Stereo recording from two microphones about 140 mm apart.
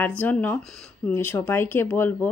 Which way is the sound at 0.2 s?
10° left (ahead or behind).